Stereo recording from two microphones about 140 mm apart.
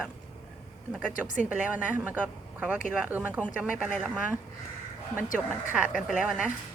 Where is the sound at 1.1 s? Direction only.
70° left (ahead or behind).